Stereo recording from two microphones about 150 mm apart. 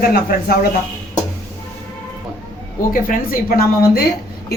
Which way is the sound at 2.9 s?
65° left (ahead or behind).